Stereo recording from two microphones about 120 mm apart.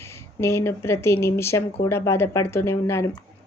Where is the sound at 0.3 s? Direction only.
20° left (ahead or behind).